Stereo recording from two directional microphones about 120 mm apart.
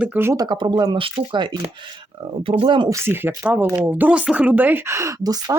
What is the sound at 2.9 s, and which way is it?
A woman's voice, 20° right (ahead or behind).